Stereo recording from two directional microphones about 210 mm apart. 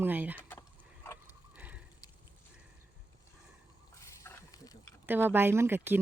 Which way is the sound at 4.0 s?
15° left (ahead or behind).